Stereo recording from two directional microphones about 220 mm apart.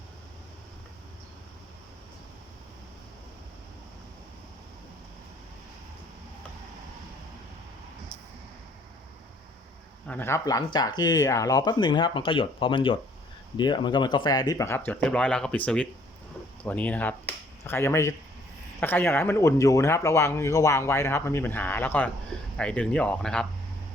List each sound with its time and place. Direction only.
10.1 s speech: 10° left (ahead or behind)